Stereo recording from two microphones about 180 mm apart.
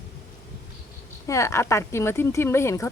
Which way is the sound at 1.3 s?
15° left (ahead or behind).